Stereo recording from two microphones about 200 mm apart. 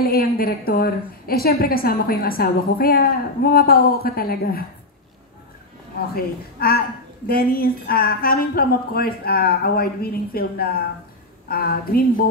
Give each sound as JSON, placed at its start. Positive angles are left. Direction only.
{"t": 0.0, "sound": "a woman's voice", "side_deg": 50}
{"t": 6.1, "sound": "a woman's voice", "side_deg": 50}